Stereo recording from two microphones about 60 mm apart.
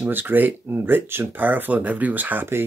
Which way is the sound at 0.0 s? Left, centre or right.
Right.